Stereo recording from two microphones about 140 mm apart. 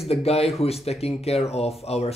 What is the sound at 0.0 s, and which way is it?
Speech, 45° left (ahead or behind).